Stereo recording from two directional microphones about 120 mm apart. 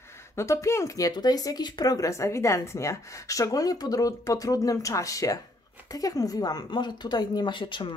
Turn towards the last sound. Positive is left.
turn(degrees=45)  # may be behind; listen again after turning